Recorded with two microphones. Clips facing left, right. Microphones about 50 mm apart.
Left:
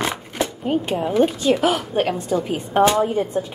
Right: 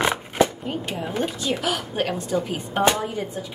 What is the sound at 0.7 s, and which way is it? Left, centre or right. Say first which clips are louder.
Speech: left 7 dB; left.